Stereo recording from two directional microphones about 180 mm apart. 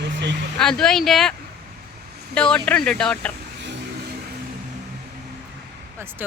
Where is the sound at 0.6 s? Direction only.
5° left (ahead or behind).